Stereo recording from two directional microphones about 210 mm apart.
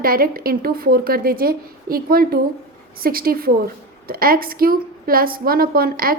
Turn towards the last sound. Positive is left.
turn(degrees=-45)  # may be behind; listen again after turning